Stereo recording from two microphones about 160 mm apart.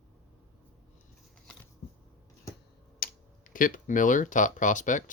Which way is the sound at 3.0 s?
65° left (ahead or behind).